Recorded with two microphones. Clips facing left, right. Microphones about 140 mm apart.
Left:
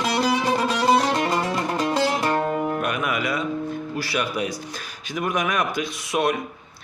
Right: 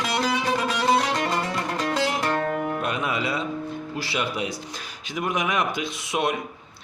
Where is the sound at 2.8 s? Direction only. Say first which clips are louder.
Left 2 dB; 25° right (ahead or behind).